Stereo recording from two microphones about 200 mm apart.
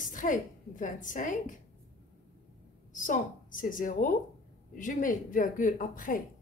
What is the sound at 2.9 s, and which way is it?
A woman's voice, 40° left (ahead or behind).